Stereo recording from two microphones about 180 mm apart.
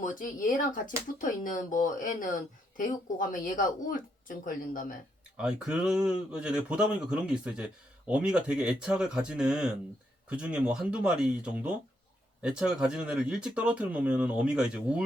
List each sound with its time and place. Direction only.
0.0 s speech: 45° left (ahead or behind)
5.4 s speech: 5° right (ahead or behind)